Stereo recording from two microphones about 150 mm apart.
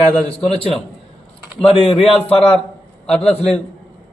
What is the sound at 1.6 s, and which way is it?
Speech, 40° left (ahead or behind).